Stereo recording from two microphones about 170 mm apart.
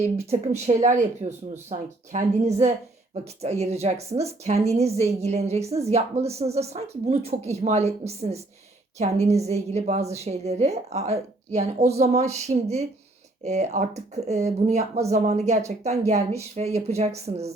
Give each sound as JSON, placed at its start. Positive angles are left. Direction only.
{"t": 0.0, "sound": "a woman's voice", "side_deg": -40}